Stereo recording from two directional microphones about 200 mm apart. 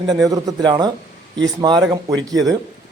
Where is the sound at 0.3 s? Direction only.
20° right (ahead or behind).